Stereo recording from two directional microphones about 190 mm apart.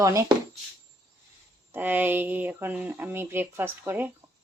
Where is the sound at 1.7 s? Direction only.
10° right (ahead or behind).